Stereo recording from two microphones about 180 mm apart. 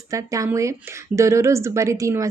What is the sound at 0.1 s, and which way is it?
A woman's voice, 15° right (ahead or behind).